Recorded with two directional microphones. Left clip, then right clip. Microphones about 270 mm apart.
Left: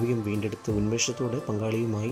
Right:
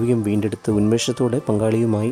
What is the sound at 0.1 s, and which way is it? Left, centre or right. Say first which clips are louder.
Speech: right 9 dB; centre.